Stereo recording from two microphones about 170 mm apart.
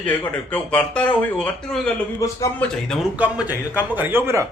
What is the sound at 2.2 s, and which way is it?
Speech, 15° left (ahead or behind).